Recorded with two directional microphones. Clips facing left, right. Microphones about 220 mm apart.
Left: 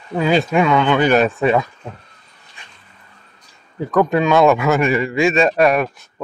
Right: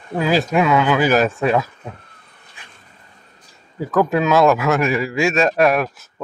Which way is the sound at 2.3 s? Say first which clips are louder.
Even; 55° right (ahead or behind).